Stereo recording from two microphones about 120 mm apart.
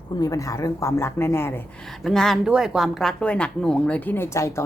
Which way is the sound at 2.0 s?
5° left (ahead or behind).